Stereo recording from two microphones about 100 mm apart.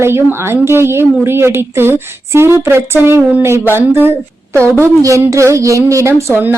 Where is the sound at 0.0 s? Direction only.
25° right (ahead or behind).